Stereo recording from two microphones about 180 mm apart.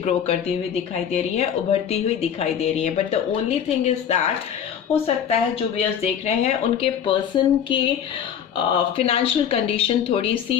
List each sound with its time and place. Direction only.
0.0 s speech: 35° left (ahead or behind)